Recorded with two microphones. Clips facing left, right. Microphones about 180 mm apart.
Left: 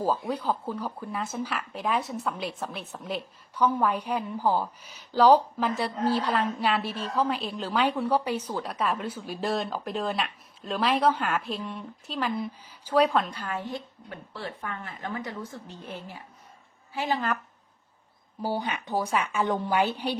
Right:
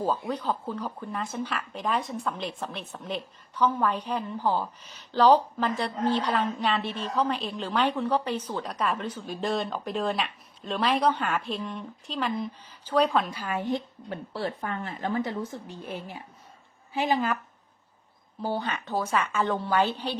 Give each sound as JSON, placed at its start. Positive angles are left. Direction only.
{"t": 0.0, "sound": "speech", "side_deg": 10}
{"t": 13.7, "sound": "speech", "side_deg": -30}
{"t": 15.6, "sound": "a woman's voice", "side_deg": -15}
{"t": 18.4, "sound": "a woman's voice", "side_deg": 15}